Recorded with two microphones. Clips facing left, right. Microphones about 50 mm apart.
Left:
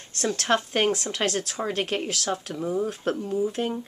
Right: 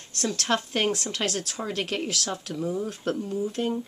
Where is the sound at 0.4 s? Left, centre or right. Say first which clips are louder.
Left 3 dB; centre.